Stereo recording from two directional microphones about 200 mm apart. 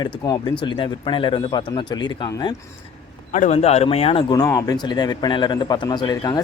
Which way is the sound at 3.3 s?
35° left (ahead or behind).